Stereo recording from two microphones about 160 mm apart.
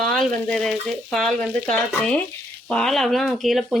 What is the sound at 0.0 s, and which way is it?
A woman's voice, 5° left (ahead or behind).